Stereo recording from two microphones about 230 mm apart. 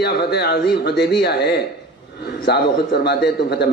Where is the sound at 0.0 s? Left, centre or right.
Left.